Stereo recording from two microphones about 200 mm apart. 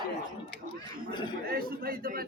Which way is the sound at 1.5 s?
50° right (ahead or behind).